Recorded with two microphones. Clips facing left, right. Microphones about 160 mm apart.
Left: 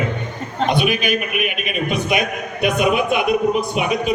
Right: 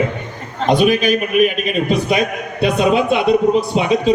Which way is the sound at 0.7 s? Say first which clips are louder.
Right 6 dB; 40° right (ahead or behind).